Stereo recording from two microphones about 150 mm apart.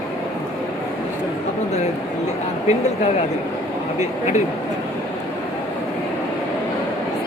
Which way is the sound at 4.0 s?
50° left (ahead or behind).